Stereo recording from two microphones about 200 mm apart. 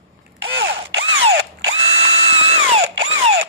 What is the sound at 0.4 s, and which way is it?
Drill, 65° right (ahead or behind).